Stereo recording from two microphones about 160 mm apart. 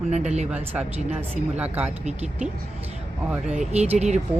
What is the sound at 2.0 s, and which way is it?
Speech, 40° right (ahead or behind).